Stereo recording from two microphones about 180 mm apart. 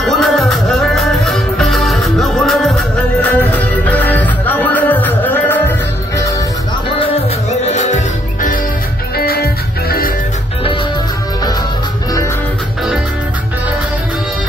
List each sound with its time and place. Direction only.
0.0 s music: centre (ahead or behind)
7.7 s music: 40° left (ahead or behind)
9.1 s music: 60° left (ahead or behind)